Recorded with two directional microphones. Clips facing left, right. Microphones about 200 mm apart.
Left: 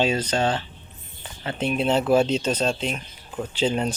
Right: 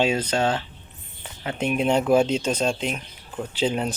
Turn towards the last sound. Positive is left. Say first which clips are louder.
# left 1 dB
turn(degrees=-10)  # may be behind; listen again after turning